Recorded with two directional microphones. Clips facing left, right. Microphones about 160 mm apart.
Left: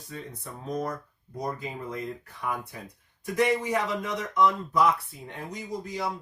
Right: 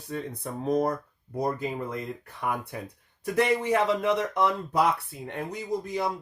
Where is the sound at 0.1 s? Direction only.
60° right (ahead or behind).